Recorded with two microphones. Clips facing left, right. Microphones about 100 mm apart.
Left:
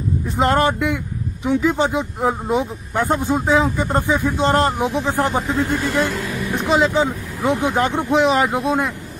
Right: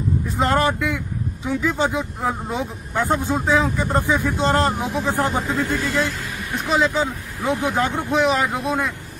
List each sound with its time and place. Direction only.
0.4 s a man's voice: 20° left (ahead or behind)